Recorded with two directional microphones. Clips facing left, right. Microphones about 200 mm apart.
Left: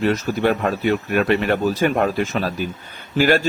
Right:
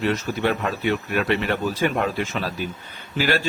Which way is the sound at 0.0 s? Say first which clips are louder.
Left 4 dB; 45° left (ahead or behind).